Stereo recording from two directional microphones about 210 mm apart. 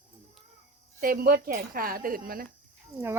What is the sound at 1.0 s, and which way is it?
Speech, 45° right (ahead or behind).